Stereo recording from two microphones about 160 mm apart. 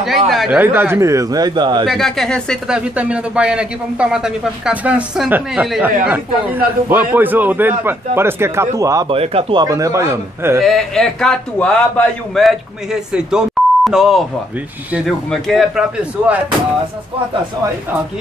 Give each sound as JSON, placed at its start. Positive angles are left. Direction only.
{"t": 0.3, "sound": "speech", "side_deg": 0}
{"t": 0.6, "sound": "a man's voice", "side_deg": -15}
{"t": 1.9, "sound": "a man's voice", "side_deg": 0}
{"t": 9.1, "sound": "a man's voice", "side_deg": -40}
{"t": 10.6, "sound": "a man's voice", "side_deg": 0}